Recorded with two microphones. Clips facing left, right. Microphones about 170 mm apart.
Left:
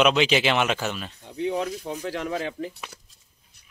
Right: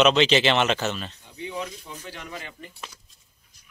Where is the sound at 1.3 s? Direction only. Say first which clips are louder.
Left 8 dB; 60° left (ahead or behind).